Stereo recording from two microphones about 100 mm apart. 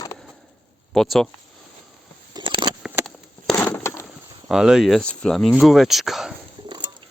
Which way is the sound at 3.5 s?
20° left (ahead or behind).